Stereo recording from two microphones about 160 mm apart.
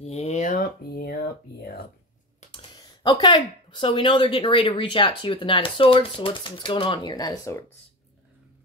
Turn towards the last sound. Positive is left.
turn(degrees=25)  # may be behind; listen again after turning